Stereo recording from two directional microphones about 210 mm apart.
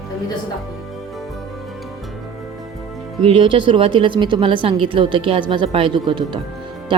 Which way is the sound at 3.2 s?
25° right (ahead or behind).